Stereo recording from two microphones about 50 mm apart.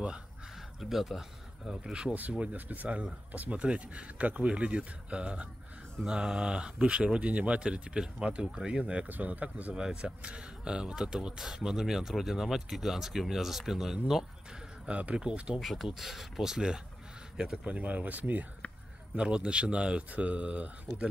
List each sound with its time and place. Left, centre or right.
0.7 s speech: centre
2.1 s speech: right; by 8.7 s centre
8.7 s speech: right
9.0 s speech: right
9.8 s speech: centre
14.9 s speech: right
15.6 s speech: centre
17.6 s speech: right
19.1 s speech: right